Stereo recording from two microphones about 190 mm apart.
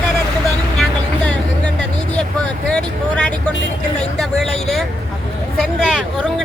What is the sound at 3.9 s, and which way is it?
Vehicle, 5° left (ahead or behind).